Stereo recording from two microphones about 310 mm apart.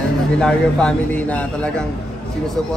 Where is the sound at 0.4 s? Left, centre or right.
Centre.